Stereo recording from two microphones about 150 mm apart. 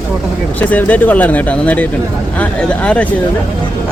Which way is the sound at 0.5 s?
10° left (ahead or behind).